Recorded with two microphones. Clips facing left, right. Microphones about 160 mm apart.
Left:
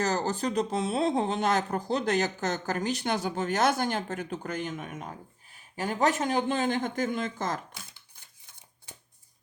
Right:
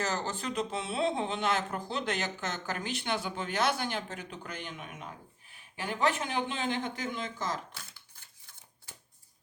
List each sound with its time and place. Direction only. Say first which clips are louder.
0.0 s speech: left 6 dB; 40° left (ahead or behind)